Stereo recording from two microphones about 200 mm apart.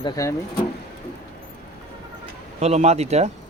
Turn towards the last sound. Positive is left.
turn(degrees=-30)  # may be behind; listen again after turning